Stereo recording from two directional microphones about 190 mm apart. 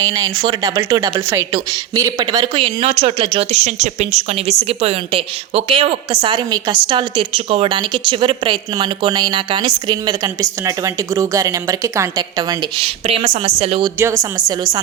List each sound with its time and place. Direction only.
0.0 s speech: 20° right (ahead or behind)